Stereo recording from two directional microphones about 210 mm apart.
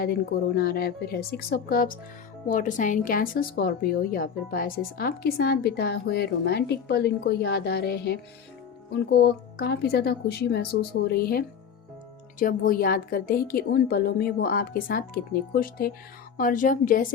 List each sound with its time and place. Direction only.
0.0 s a woman's voice: 45° left (ahead or behind)